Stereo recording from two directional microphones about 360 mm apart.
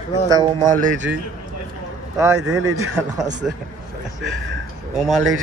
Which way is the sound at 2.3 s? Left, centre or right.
Right.